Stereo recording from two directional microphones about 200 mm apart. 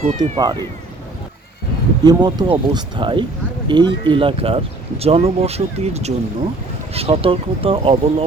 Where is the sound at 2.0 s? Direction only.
20° right (ahead or behind).